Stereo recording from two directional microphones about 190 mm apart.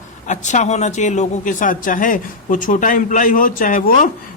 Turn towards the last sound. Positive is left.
turn(degrees=45)  # may be behind; listen again after turning